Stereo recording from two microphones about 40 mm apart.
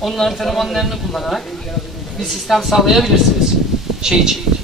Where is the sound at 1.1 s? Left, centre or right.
Centre.